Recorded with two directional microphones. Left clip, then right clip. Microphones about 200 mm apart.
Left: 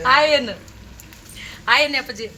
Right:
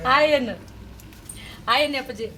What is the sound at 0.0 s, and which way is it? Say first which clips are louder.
A woman's voice: left 3 dB; 5° left (ahead or behind).